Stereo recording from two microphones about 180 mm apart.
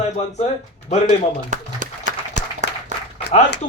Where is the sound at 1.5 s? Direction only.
45° right (ahead or behind).